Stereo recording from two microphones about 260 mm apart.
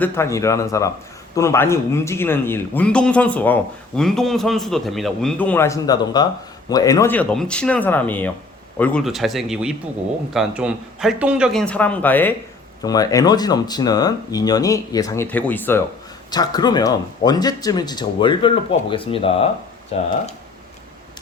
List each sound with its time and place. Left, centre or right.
0.0 s speech: centre